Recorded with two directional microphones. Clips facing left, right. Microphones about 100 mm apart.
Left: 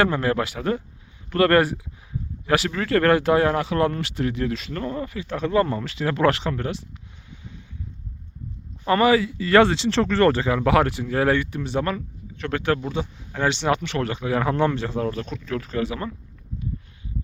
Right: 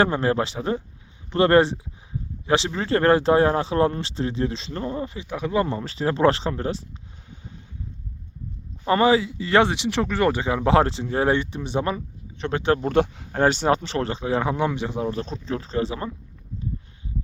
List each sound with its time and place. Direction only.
0.0 s speech: 30° right (ahead or behind)
5.8 s speech: 35° right (ahead or behind)
8.9 s speech: 25° right (ahead or behind)
12.9 s speech: 65° right (ahead or behind)
13.3 s speech: 45° right (ahead or behind); by 14.5 s 25° right (ahead or behind)
14.5 s speech: 15° right (ahead or behind)
15.2 s speech: 30° right (ahead or behind)